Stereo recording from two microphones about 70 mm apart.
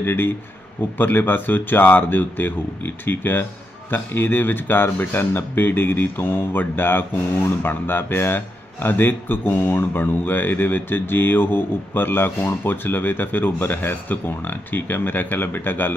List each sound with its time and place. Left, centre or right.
0.0 s a man's voice: left